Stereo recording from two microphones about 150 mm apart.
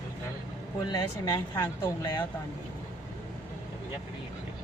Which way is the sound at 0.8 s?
30° left (ahead or behind).